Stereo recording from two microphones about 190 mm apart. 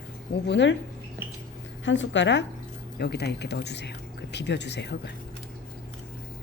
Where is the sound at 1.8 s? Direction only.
80° left.